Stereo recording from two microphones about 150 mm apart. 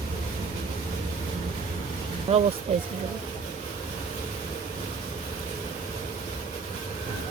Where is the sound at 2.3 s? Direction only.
45° right (ahead or behind).